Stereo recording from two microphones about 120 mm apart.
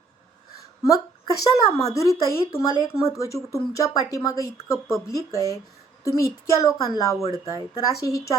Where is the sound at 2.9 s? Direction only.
5° right (ahead or behind).